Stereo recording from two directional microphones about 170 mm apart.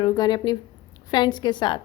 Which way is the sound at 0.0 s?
25° left (ahead or behind).